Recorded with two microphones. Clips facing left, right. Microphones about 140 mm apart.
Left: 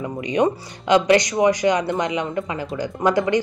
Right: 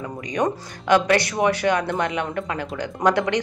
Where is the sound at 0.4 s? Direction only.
15° left (ahead or behind).